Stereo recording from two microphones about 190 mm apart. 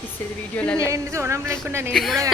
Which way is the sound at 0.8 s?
15° right (ahead or behind).